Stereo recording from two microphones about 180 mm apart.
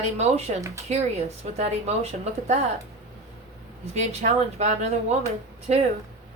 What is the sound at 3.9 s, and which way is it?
Speech, 40° right (ahead or behind).